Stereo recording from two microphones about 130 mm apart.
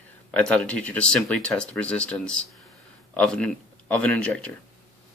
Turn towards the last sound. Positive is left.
turn(degrees=10)  # may be behind; listen again after turning